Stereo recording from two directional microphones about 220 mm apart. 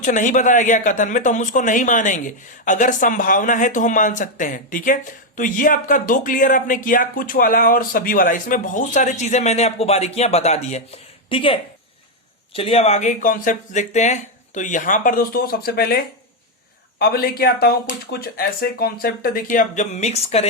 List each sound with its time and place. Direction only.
0.0 s speech: 35° left (ahead or behind)
12.5 s speech: 25° left (ahead or behind)